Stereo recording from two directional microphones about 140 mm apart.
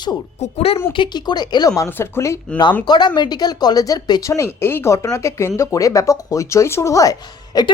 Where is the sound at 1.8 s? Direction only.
15° left (ahead or behind).